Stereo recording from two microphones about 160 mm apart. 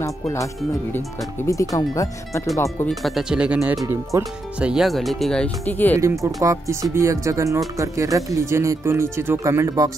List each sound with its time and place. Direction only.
0.0 s speech: 20° left (ahead or behind)
2.9 s speech: centre (ahead or behind)
3.8 s speech: 20° right (ahead or behind)
4.6 s speech: 5° right (ahead or behind); by 5.9 s 10° left (ahead or behind)
6.2 s speech: 20° right (ahead or behind)